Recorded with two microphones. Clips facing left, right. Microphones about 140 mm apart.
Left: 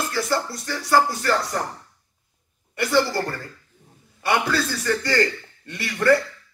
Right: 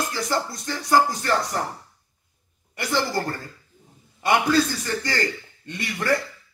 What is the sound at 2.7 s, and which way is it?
A man's voice, 20° right (ahead or behind).